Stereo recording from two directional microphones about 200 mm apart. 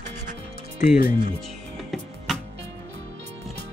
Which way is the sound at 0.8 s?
40° left (ahead or behind).